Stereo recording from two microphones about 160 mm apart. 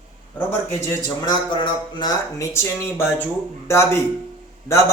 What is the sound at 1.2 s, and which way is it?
Speech, 30° left (ahead or behind).